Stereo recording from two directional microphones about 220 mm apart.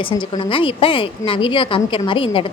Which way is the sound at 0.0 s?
25° left (ahead or behind).